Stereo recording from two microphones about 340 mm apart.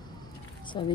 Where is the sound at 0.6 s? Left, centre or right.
Centre.